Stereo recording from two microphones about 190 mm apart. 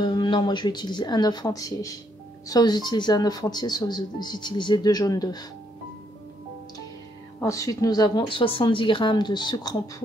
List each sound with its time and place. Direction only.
0.0 s speech: 25° left (ahead or behind)
7.3 s speech: 15° left (ahead or behind)